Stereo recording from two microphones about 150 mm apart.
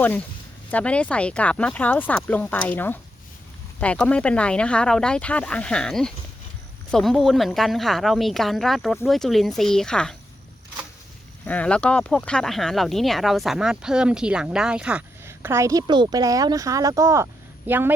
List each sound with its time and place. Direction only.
0.7 s speech: 10° left (ahead or behind)
11.4 s speech: 10° left (ahead or behind); by 15.0 s 5° right (ahead or behind)
15.3 s a woman's voice: 20° right (ahead or behind)